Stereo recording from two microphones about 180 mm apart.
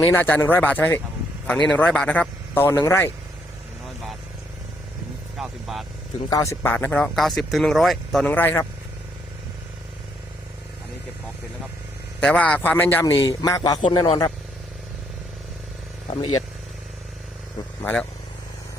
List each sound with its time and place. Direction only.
0.0 s speech: 10° left (ahead or behind)
3.8 s vehicle: centre (ahead or behind)
5.4 s speech: centre (ahead or behind)
6.3 s speech: 15° left (ahead or behind)
12.2 s a man's voice: 10° left (ahead or behind); by 14.3 s 25° left (ahead or behind)